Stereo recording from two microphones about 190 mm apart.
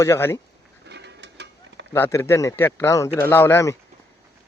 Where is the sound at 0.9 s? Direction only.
65° right (ahead or behind).